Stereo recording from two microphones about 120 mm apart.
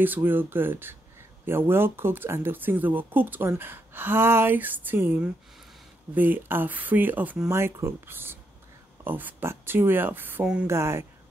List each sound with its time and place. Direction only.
0.0 s speech: 15° right (ahead or behind)
10.7 s speech: 20° right (ahead or behind)